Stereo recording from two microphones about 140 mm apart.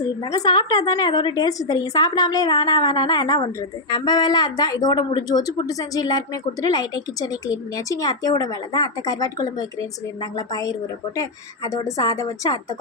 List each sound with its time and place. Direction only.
0.3 s a woman's voice: 30° left (ahead or behind)